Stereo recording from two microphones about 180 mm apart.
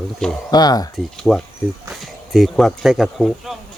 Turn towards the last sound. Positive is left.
turn(degrees=0)  # may be behind; listen again after turning